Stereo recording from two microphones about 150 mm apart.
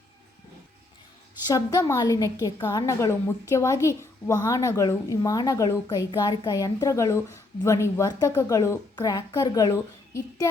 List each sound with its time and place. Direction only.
1.5 s a child's voice: 25° left (ahead or behind)